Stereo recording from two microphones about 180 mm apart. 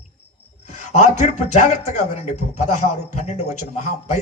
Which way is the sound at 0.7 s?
40° left (ahead or behind).